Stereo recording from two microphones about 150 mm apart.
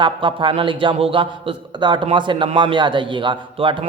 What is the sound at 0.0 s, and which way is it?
A man's voice, 35° right (ahead or behind).